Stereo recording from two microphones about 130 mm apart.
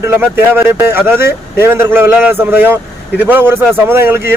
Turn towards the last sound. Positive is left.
turn(degrees=-20)  # may be behind; listen again after turning